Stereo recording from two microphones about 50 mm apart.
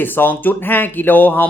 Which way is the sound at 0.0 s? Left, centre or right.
Left.